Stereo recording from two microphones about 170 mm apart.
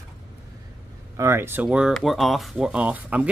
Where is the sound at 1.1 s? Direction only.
15° right (ahead or behind).